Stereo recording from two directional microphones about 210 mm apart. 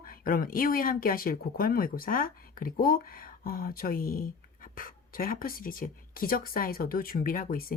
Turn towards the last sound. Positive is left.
turn(degrees=45)  # may be behind; listen again after turning